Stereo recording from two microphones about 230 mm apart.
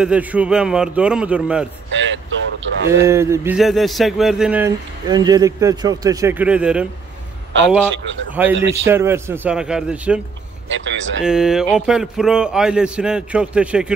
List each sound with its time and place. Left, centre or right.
0.0 s a man's voice: centre
1.9 s vehicle: right
2.6 s speech: right
3.1 s a man's voice: centre
7.9 s speech: right
8.3 s a man's voice: centre
10.7 s speech: right
11.2 s a man's voice: centre